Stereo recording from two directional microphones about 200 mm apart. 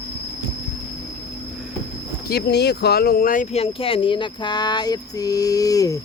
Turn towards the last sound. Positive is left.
turn(degrees=15)  # may be behind; listen again after turning